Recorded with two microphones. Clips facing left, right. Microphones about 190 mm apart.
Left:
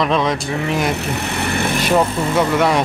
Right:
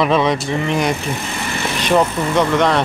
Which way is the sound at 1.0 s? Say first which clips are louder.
Left 2 dB; 65° left (ahead or behind).